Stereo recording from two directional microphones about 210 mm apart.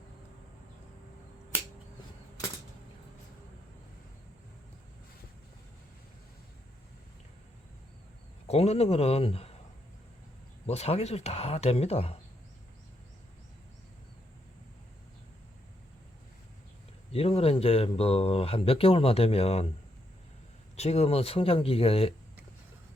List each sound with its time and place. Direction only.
8.4 s speech: 30° left (ahead or behind)
10.7 s speech: 30° left (ahead or behind)
17.1 s speech: 30° left (ahead or behind)
20.7 s speech: 30° left (ahead or behind)